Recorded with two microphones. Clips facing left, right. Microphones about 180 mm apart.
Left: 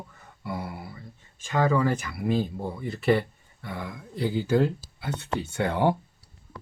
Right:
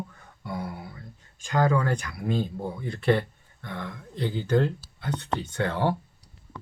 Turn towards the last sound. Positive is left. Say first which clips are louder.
# left 2 dB
turn(degrees=15)  # may be behind; listen again after turning